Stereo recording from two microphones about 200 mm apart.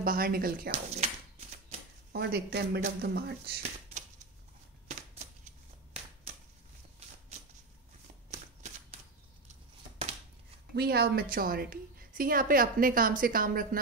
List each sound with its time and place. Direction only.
0.0 s a woman's voice: 45° right (ahead or behind)
2.1 s a woman's voice: 55° right (ahead or behind)
4.8 s typewriter: 40° right (ahead or behind)
10.7 s a woman's voice: 50° right (ahead or behind)